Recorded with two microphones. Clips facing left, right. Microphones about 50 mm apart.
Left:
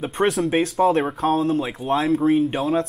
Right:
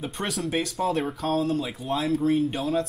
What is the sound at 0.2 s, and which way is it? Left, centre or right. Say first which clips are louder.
Speech: left 9 dB; left.